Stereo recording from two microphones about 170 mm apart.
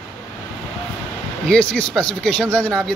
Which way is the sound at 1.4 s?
5° left (ahead or behind).